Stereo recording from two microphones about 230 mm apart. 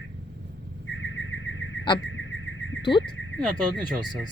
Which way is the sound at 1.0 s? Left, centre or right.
Left.